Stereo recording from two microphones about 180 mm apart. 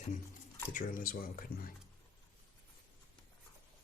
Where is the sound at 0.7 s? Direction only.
50° left (ahead or behind).